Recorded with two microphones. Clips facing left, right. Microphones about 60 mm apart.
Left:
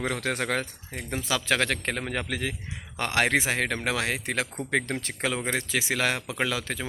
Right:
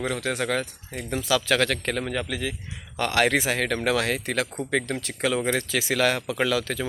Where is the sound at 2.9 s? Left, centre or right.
Left.